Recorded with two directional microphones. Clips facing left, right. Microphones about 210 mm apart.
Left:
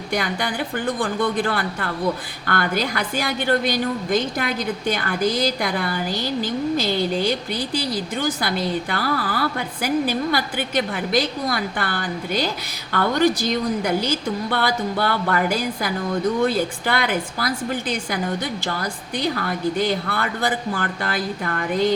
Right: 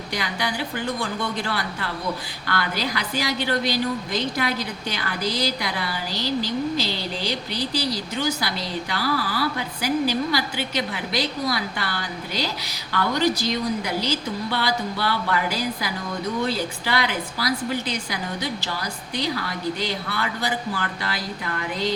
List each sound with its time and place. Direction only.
0.1 s a woman's voice: 50° left (ahead or behind)